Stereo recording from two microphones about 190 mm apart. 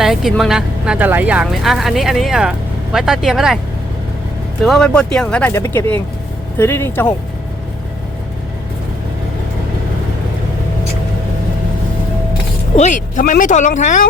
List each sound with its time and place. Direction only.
0.0 s speech: centre (ahead or behind)
4.6 s speech: 5° left (ahead or behind)
12.7 s speech: 40° left (ahead or behind)